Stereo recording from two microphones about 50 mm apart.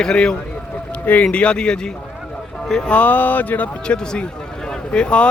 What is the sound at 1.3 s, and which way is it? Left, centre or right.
Speech, left.